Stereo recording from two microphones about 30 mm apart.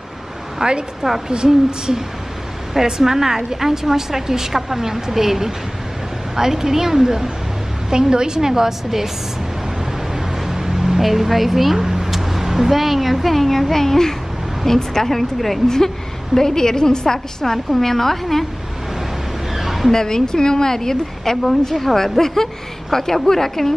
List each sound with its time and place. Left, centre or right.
0.6 s a woman's voice: right
1.0 s a woman's voice: centre
10.1 s vehicle: centre
11.0 s a woman's voice: centre
16.3 s a woman's voice: centre
19.5 s a sound: centre
19.9 s a woman's voice: centre